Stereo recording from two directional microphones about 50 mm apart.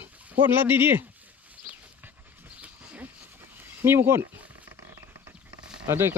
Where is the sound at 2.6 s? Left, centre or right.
Right.